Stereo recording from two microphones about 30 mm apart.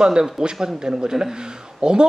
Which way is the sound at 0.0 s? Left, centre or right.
Right.